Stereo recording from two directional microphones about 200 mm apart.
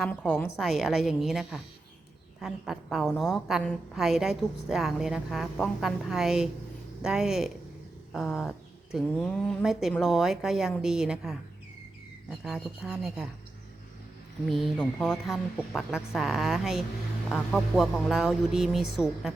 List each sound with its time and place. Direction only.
0.0 s a woman's voice: 5° left (ahead or behind)
0.6 s a woman's voice: centre (ahead or behind)
14.4 s a woman's voice: centre (ahead or behind)